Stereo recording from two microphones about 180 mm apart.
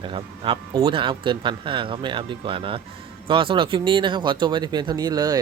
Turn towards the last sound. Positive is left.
turn(degrees=-20)  # may be behind; listen again after turning